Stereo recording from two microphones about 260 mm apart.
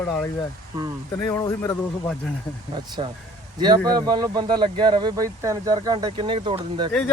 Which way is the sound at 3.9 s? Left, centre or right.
Centre.